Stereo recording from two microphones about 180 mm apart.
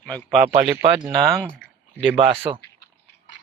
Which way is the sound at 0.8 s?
25° right (ahead or behind).